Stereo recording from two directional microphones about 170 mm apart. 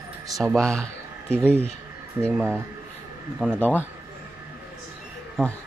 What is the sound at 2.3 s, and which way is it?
Speech, 10° right (ahead or behind).